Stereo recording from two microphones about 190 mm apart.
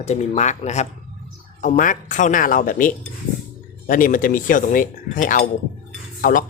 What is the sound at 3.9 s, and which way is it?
Speech, 45° left (ahead or behind).